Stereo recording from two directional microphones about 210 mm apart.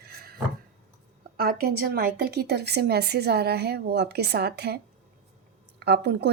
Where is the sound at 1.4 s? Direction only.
45° right (ahead or behind).